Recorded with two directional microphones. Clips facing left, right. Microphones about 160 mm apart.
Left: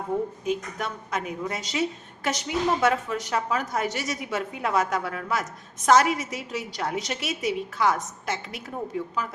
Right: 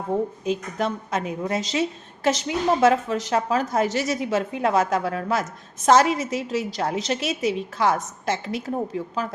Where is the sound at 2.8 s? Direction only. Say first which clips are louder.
Right 5 dB; 25° right (ahead or behind).